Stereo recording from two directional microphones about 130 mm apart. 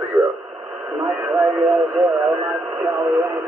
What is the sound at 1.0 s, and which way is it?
Radio, centre (ahead or behind).